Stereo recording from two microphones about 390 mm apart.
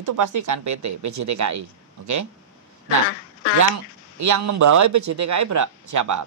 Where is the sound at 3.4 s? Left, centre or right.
Left.